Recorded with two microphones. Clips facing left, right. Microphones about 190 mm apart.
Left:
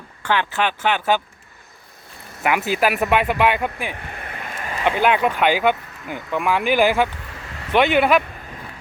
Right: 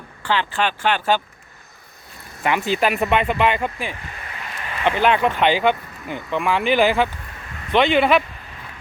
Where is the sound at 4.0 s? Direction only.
55° left (ahead or behind).